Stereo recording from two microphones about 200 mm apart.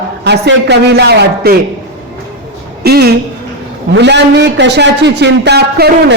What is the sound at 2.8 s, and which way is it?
A woman's voice, 55° right (ahead or behind).